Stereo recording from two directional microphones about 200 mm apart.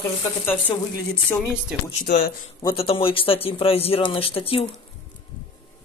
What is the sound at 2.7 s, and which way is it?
Speech, 30° left (ahead or behind).